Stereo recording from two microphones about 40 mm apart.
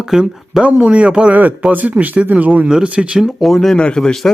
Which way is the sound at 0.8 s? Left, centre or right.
Right.